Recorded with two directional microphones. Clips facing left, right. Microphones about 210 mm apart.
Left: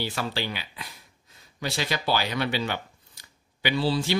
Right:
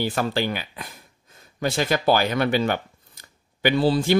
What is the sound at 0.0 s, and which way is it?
Speech, 50° right (ahead or behind).